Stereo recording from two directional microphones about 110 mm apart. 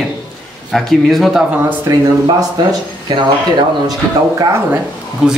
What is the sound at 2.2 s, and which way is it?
Speech, 35° right (ahead or behind).